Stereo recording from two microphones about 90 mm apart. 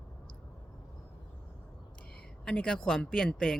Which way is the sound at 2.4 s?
10° left (ahead or behind).